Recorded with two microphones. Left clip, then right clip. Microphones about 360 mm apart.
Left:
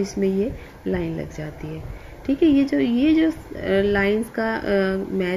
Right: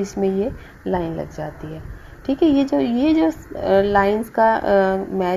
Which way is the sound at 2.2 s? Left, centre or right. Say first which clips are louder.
Right 1 dB; centre.